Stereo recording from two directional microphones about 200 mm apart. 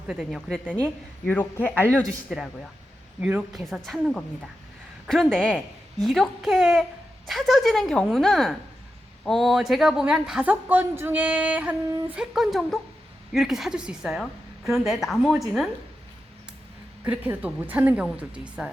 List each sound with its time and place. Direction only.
0.1 s speech: centre (ahead or behind)
17.0 s speech: 10° right (ahead or behind)